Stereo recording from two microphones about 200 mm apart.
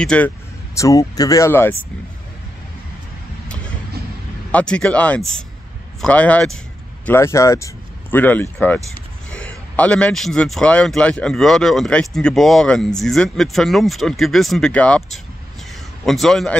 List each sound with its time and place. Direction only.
0.0 s a man's voice: 5° left (ahead or behind)
0.7 s speech: 15° left (ahead or behind)
4.5 s a man's voice: 5° left (ahead or behind)
16.1 s a man's voice: centre (ahead or behind)